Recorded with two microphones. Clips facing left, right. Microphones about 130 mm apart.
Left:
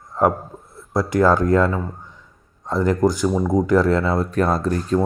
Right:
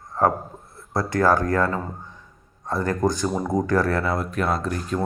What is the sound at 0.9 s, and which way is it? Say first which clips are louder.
Speech: left 3 dB; 15° left (ahead or behind).